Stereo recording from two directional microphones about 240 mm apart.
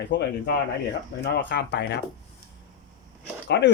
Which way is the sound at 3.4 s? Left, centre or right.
Left.